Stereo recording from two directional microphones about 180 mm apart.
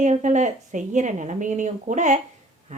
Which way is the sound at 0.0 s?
40° right (ahead or behind).